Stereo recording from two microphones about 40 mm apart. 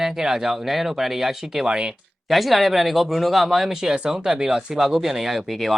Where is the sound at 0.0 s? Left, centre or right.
Centre.